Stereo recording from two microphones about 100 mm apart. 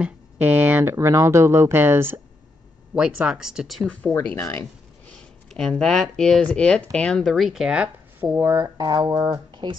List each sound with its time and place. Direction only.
0.0 s speech: 20° right (ahead or behind)
0.9 s speech: 30° right (ahead or behind); by 3.9 s 5° right (ahead or behind)
4.4 s a sound: 25° left (ahead or behind)
5.5 s speech: 5° left (ahead or behind); by 8.4 s 10° right (ahead or behind)
8.4 s speech: 25° right (ahead or behind)
8.7 s speech: 40° right (ahead or behind)
9.6 s speech: 50° right (ahead or behind)